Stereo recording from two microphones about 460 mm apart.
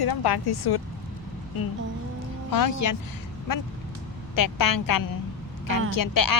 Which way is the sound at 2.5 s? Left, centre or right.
Left.